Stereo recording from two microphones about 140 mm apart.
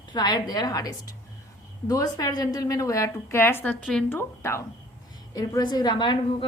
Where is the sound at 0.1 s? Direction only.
30° left (ahead or behind).